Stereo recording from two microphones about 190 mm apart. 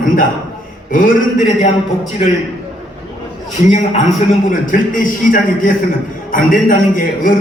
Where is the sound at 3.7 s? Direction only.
40° left (ahead or behind).